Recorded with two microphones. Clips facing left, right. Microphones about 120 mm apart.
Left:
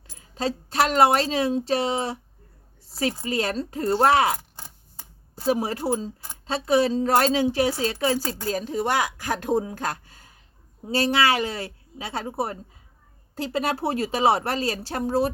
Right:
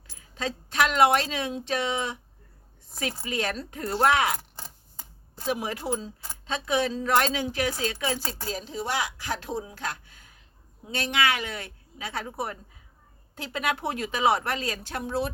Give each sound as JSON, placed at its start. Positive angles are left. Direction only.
{"t": 0.3, "sound": "speech", "side_deg": 35}
{"t": 3.2, "sound": "speech", "side_deg": 35}
{"t": 5.5, "sound": "speech", "side_deg": 35}
{"t": 8.4, "sound": "speech", "side_deg": 50}